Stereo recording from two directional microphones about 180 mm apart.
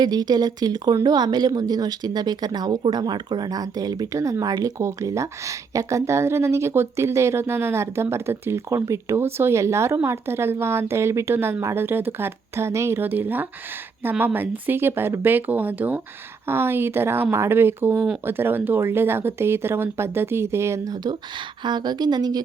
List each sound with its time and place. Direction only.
0.0 s speech: 20° right (ahead or behind)